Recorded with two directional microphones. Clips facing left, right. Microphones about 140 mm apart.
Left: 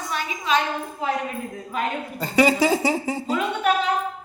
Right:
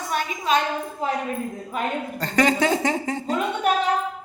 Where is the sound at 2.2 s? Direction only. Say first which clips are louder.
Left 2 dB; 10° left (ahead or behind).